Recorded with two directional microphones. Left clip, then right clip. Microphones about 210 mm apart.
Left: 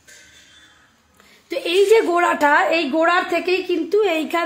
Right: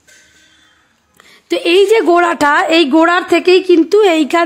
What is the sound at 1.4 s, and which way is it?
A woman's voice, 45° right (ahead or behind).